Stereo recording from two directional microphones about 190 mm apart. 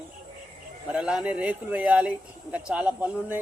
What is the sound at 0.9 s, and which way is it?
Speech, 5° right (ahead or behind).